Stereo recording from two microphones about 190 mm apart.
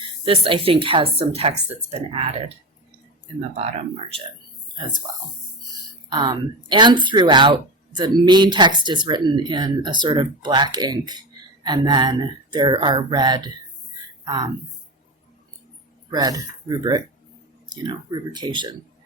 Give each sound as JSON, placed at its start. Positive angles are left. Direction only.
{"t": 0.3, "sound": "speech", "side_deg": -30}
{"t": 3.6, "sound": "speech", "side_deg": -30}
{"t": 6.1, "sound": "speech", "side_deg": -20}
{"t": 16.0, "sound": "speech", "side_deg": -20}